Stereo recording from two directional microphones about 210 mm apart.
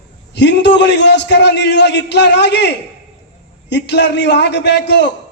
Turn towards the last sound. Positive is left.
turn(degrees=55)  # may be behind; listen again after turning